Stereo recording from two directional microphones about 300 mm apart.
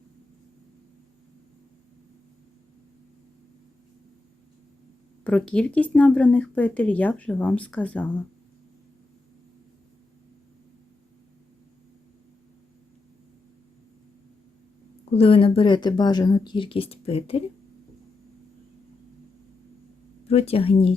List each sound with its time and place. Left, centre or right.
5.2 s speech: centre
15.1 s speech: centre
20.2 s speech: centre